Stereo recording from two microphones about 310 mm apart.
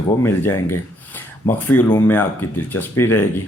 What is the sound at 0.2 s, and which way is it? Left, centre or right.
Speech, centre.